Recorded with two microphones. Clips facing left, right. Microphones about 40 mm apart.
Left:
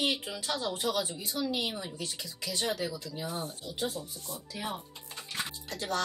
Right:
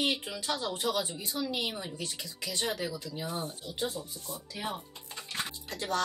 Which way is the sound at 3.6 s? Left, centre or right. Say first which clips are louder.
Even; right.